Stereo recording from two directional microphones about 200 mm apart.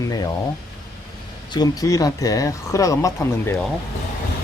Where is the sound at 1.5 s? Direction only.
20° left (ahead or behind).